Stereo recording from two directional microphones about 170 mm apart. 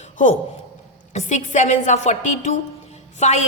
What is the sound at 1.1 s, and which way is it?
A woman's voice, 45° left (ahead or behind).